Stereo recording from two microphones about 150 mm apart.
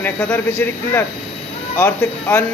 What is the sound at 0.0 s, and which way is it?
Speech, 10° left (ahead or behind).